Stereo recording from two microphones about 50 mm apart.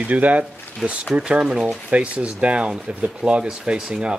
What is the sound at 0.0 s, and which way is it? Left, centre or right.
Speech, right.